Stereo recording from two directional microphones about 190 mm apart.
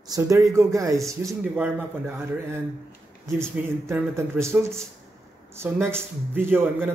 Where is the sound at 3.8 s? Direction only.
15° right (ahead or behind).